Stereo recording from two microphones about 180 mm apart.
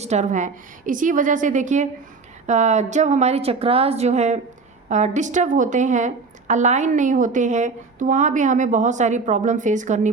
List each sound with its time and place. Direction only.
0.0 s a woman's voice: 40° right (ahead or behind)